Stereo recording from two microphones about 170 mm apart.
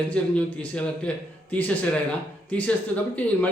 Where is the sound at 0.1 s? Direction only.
10° left (ahead or behind).